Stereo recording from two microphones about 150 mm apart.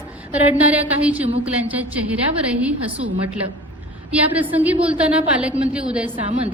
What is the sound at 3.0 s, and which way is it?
Speech, 50° right (ahead or behind).